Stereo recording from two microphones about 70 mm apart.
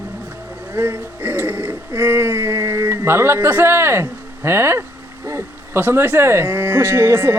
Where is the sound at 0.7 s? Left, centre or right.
Right.